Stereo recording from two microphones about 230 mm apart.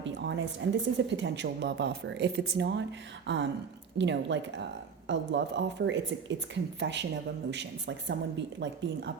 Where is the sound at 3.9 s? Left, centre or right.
Right.